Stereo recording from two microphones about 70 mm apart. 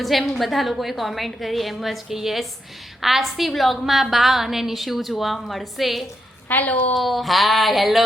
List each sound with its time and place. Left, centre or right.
0.0 s a woman's voice: centre
6.5 s a woman's voice: left
6.9 s a woman's voice: centre